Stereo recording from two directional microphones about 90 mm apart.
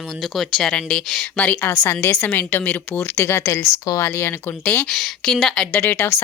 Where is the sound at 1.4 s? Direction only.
20° left (ahead or behind).